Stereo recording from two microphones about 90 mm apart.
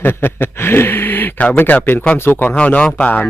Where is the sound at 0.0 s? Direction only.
20° left (ahead or behind).